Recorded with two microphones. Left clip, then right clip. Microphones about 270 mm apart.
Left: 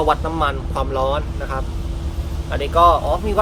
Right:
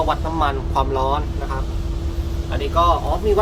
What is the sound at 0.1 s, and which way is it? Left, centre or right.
Speech, centre.